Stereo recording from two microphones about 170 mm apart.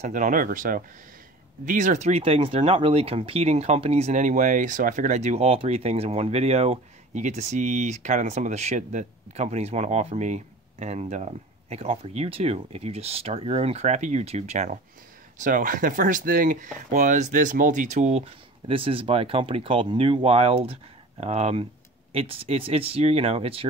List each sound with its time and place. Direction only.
0.0 s speech: 45° right (ahead or behind)